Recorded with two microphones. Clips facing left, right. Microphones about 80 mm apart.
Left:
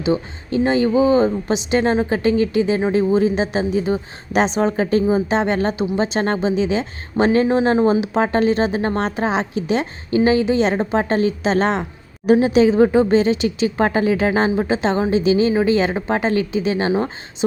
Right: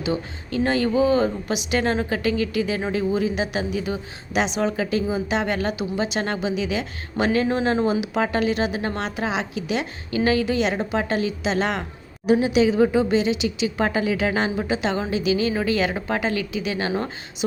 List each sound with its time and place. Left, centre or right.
0.0 s a woman's voice: left